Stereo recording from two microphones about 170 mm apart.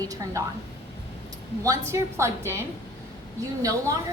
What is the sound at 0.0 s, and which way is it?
Speech, 20° right (ahead or behind).